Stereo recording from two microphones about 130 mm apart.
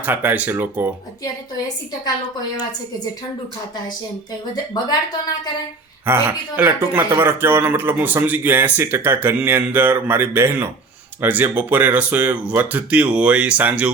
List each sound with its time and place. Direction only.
0.0 s speech: 15° right (ahead or behind)
6.1 s speech: 15° right (ahead or behind)